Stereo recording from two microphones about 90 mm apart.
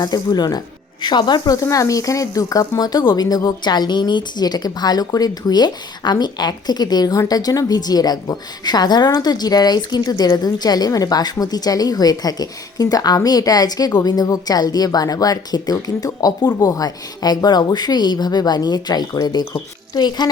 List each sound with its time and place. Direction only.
0.0 s speech: 50° left (ahead or behind)
1.5 s speech: 35° left (ahead or behind)